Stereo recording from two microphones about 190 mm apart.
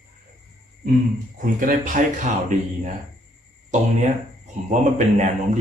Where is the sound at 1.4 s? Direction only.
45° right (ahead or behind).